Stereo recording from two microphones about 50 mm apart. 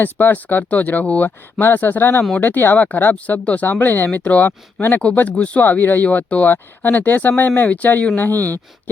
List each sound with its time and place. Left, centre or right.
0.0 s speech: left
2.7 s speech: left